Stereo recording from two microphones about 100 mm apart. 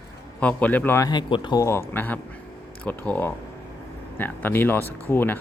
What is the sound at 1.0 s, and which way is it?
Speech, 45° left (ahead or behind).